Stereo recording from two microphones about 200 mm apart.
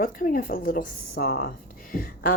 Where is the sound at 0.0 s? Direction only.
45° left (ahead or behind).